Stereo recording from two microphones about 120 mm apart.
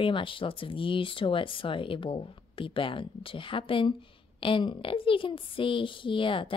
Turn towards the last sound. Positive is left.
turn(degrees=45)  # may be behind; listen again after turning